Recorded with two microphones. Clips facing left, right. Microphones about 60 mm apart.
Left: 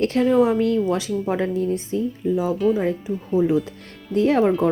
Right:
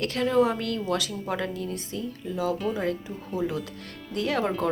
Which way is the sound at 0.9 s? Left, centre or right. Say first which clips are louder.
Left 6 dB; left.